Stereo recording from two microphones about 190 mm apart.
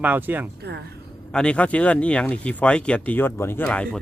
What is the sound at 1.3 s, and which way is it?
Speech, 5° left (ahead or behind).